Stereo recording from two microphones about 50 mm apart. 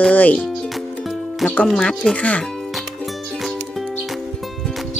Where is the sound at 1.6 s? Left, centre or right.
Centre.